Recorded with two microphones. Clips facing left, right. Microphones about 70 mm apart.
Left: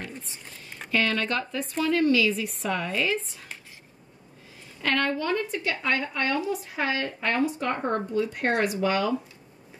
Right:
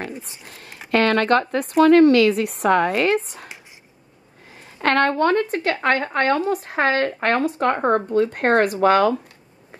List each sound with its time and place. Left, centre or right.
0.2 s speech: right
4.8 s speech: right